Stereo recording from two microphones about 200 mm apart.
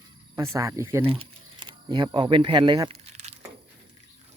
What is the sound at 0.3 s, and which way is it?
Speech, 15° right (ahead or behind).